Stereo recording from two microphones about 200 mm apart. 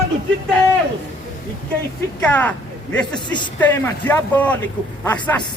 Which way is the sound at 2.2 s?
5° left (ahead or behind).